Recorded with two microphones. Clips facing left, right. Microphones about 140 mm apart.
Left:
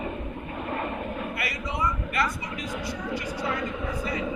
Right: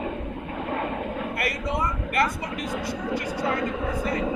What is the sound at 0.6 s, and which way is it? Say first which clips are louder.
Train: right 2 dB; 90° right.